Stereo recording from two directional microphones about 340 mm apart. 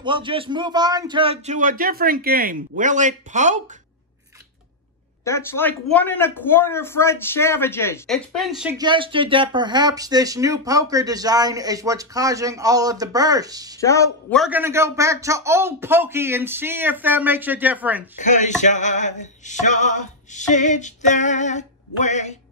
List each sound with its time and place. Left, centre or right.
0.0 s speech: centre
5.2 s speech: centre
13.7 s speech: centre
18.2 s music: left